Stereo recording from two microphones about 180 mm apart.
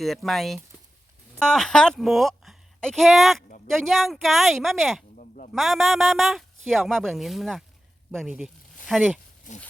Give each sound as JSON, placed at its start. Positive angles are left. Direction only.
{"t": 0.0, "sound": "a woman's voice", "side_deg": 0}
{"t": 5.1, "sound": "a sound", "side_deg": 45}
{"t": 5.5, "sound": "speech", "side_deg": 0}
{"t": 9.5, "sound": "speech", "side_deg": 45}